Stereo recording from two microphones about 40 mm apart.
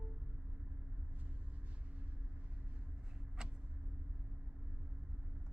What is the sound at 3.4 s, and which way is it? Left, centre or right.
Vehicle, centre.